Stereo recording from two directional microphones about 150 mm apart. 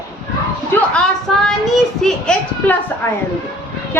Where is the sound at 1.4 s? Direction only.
Centre (ahead or behind).